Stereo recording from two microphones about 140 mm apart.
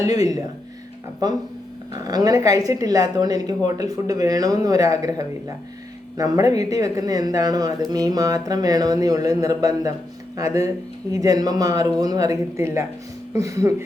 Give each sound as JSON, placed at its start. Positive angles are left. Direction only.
{"t": 0.0, "sound": "a woman's voice", "side_deg": -25}